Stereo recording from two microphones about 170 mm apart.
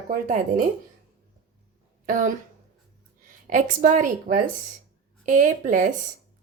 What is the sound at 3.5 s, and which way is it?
Speech, 50° right (ahead or behind).